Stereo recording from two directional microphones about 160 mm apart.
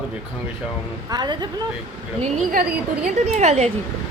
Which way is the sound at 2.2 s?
60° right (ahead or behind).